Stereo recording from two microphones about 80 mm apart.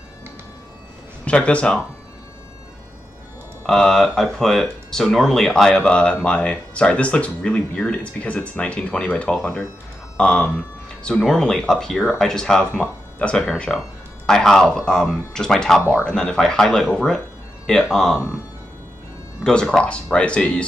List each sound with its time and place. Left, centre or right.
1.2 s speech: centre
3.6 s speech: centre
19.4 s speech: centre